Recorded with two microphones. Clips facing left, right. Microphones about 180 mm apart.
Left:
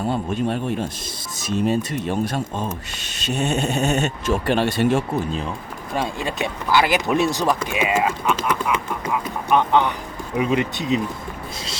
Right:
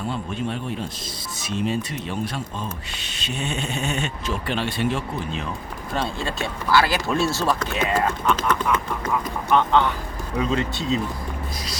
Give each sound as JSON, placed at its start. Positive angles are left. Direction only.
{"t": 0.0, "sound": "speech", "side_deg": 45}
{"t": 5.9, "sound": "speech", "side_deg": 15}